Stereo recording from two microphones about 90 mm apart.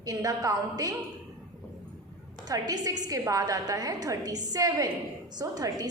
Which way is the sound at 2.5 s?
45° right (ahead or behind).